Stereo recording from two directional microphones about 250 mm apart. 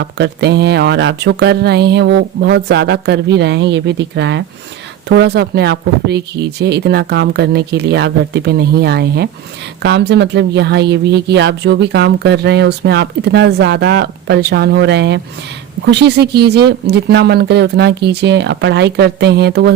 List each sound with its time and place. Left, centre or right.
0.0 s speech: right